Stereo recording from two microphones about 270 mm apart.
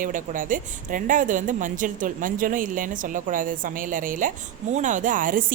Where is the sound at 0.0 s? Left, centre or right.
Right.